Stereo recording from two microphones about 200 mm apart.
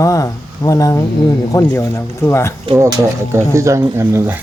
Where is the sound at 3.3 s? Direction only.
15° right (ahead or behind).